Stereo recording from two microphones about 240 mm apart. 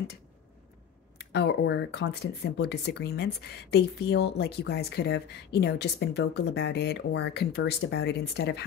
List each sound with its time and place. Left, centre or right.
1.3 s speech: left